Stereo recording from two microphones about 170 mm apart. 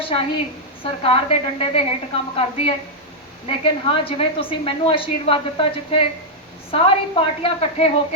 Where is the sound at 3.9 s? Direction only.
35° left (ahead or behind).